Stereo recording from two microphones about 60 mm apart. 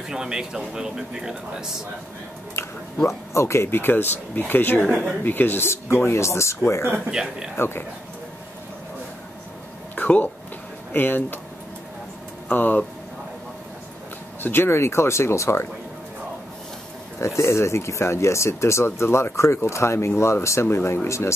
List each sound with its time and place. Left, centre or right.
0.1 s a man's voice: centre
3.1 s speech: left
3.6 s speech: left
4.8 s a man's voice: centre
5.2 s speech: left
7.1 s a man's voice: centre
7.5 s speech: left
9.9 s speech: left
12.5 s speech: left
14.4 s speech: left
17.2 s speech: left